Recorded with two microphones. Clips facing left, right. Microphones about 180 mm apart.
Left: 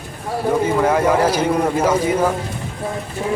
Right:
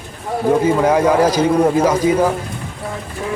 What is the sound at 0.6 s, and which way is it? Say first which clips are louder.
A man's voice: right 1 dB; 10° right (ahead or behind).